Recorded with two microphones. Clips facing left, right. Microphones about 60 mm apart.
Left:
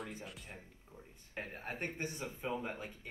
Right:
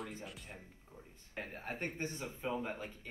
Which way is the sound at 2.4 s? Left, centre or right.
Centre.